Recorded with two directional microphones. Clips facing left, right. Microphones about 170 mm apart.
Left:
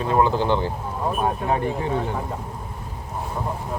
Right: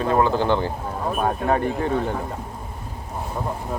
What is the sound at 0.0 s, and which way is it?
Speech, 40° right (ahead or behind).